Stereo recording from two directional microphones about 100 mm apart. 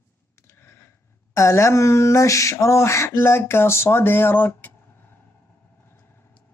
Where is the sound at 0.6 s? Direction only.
25° left (ahead or behind).